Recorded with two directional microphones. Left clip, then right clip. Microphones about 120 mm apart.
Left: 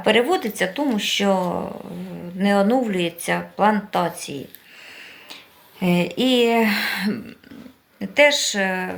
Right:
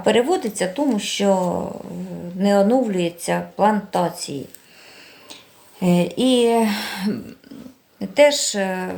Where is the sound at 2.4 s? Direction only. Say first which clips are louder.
Right 2 dB; 20° right (ahead or behind).